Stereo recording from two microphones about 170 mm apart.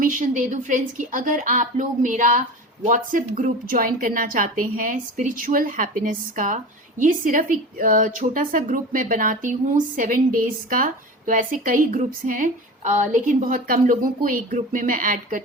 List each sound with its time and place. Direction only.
0.0 s a woman's voice: 50° right (ahead or behind)